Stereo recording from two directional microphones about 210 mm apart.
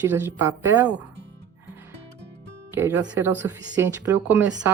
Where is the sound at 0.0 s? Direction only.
10° right (ahead or behind).